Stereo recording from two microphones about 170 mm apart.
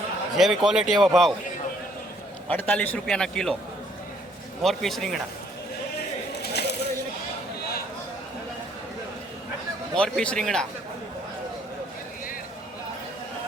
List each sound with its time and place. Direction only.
0.3 s speech: centre (ahead or behind)
2.5 s a man's voice: 10° left (ahead or behind)
4.6 s speech: centre (ahead or behind)
6.5 s a sound: 75° left (ahead or behind)
9.9 s speech: 5° left (ahead or behind)